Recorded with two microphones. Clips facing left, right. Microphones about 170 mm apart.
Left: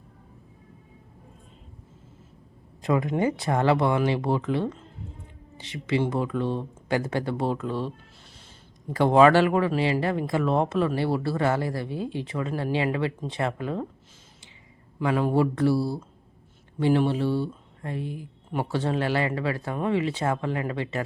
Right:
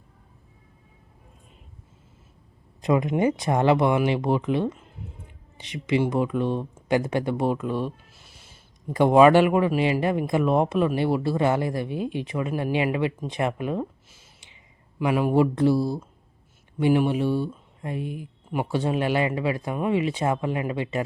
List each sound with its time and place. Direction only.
2.8 s speech: 20° right (ahead or behind)
14.9 s speech: 15° right (ahead or behind)